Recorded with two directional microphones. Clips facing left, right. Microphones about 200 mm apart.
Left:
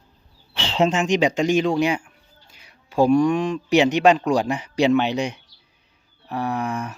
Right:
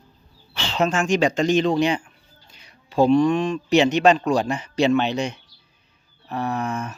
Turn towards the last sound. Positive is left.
turn(degrees=15)  # may be behind; listen again after turning